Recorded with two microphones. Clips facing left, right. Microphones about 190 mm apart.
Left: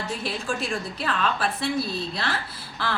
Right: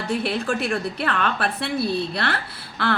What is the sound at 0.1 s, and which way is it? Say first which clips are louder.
A woman's voice: right 9 dB; 60° right (ahead or behind).